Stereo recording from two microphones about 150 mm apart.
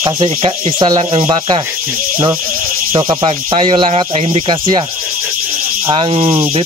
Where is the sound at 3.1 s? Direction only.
35° right (ahead or behind).